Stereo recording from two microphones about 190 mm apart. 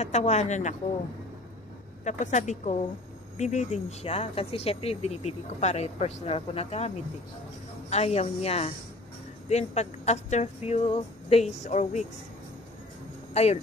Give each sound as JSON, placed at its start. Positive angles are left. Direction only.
{"t": 0.0, "sound": "speech", "side_deg": 35}
{"t": 2.0, "sound": "speech", "side_deg": 40}
{"t": 7.9, "sound": "speech", "side_deg": 35}
{"t": 13.3, "sound": "speech", "side_deg": 35}